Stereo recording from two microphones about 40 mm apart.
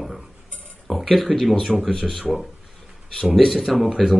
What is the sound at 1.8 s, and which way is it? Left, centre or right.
Speech, centre.